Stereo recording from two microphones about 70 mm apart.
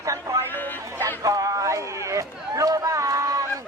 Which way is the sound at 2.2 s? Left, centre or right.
Right.